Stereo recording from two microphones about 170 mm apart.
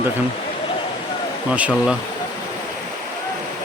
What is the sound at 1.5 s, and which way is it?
Speech, 10° right (ahead or behind).